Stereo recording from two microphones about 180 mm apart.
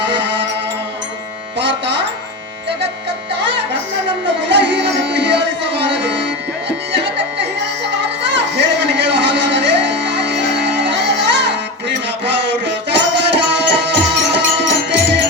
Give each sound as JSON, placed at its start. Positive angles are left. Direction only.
{"t": 0.0, "sound": "music", "side_deg": -80}
{"t": 1.5, "sound": "music", "side_deg": -80}
{"t": 4.4, "sound": "music", "side_deg": -75}
{"t": 8.9, "sound": "music", "side_deg": -75}